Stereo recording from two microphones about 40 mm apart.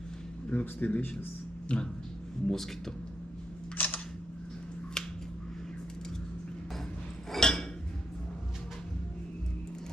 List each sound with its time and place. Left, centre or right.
0.6 s speech: left
1.7 s a sound: left
2.5 s speech: centre
3.8 s single-lens reflex camera: left
5.0 s finger snapping: centre
7.3 s a sound: centre